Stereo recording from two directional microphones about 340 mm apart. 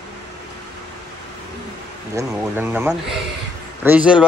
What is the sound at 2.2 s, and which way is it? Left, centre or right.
Speech, centre.